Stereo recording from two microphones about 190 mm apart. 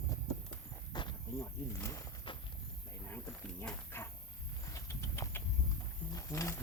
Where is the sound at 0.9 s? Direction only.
25° left (ahead or behind).